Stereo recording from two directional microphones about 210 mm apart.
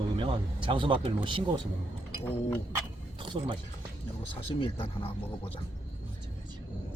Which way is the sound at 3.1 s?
25° right (ahead or behind).